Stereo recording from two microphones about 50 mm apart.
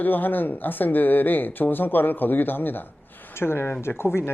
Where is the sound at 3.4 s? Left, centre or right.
Left.